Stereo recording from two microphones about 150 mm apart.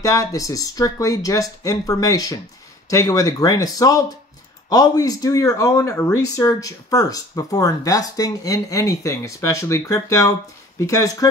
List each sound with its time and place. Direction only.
0.0 s speech: 20° left (ahead or behind)